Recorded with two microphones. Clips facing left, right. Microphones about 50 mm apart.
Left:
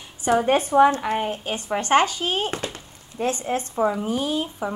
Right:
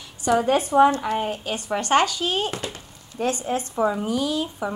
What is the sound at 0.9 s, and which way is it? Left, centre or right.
A woman's voice, left.